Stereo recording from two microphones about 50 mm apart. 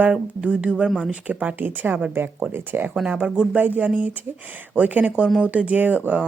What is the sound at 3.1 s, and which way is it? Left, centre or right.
Speech, right.